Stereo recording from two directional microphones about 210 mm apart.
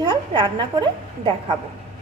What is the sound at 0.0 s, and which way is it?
A woman's voice, 20° right (ahead or behind).